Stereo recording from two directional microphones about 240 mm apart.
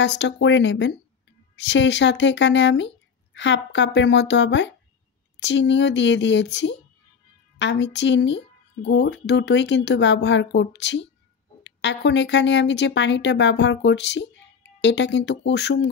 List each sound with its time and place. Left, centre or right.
0.0 s speech: left